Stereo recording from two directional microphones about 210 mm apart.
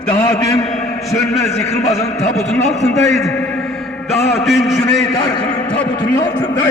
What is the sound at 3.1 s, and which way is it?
Speech, centre (ahead or behind).